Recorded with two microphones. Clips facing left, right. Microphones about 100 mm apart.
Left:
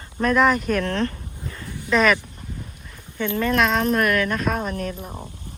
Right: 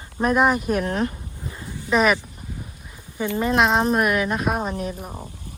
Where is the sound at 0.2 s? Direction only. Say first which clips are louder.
Even; 10° right (ahead or behind).